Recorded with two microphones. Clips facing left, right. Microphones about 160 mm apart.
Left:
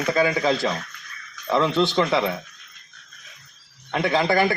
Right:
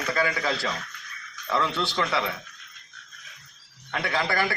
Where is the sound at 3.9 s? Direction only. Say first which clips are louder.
Left 7 dB; 20° left (ahead or behind).